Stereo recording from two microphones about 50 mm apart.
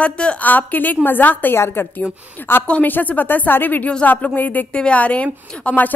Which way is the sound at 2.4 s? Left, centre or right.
Left.